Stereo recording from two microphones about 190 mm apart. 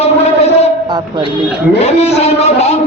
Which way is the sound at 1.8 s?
35° left (ahead or behind).